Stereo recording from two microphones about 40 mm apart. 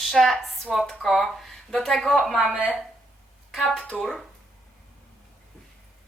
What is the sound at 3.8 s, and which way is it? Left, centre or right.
Speech, left.